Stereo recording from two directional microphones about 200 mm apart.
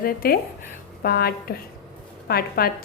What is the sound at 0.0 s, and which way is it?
A woman's voice, 45° left (ahead or behind).